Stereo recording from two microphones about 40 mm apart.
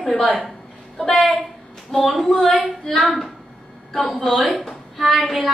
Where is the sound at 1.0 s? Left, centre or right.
Centre.